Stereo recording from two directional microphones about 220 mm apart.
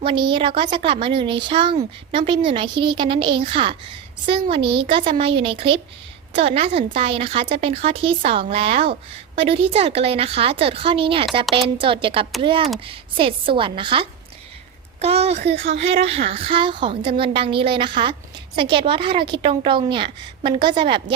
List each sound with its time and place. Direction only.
0.0 s a woman's voice: 25° right (ahead or behind)